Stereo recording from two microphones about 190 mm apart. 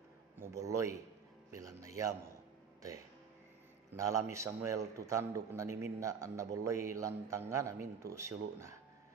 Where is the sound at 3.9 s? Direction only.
15° right (ahead or behind).